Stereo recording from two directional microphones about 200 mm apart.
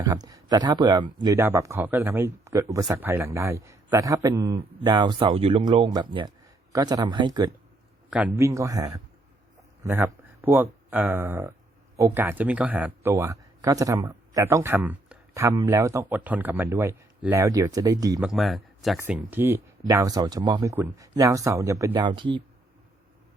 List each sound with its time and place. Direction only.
0.0 s a man's voice: 20° right (ahead or behind)
8.1 s speech: 10° right (ahead or behind)
18.2 s speech: centre (ahead or behind); by 22.4 s 25° right (ahead or behind)